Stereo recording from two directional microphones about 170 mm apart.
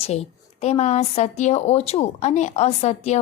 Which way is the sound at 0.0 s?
40° left (ahead or behind).